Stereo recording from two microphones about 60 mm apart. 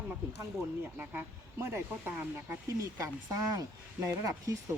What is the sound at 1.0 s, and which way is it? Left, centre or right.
Speech, right.